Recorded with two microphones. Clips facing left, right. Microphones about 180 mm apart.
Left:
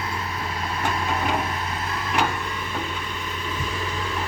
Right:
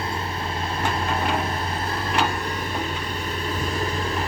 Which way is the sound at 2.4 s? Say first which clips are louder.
Right 2 dB; 40° right (ahead or behind).